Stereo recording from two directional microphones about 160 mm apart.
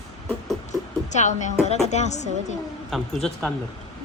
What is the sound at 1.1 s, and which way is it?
A woman's voice, 50° left (ahead or behind).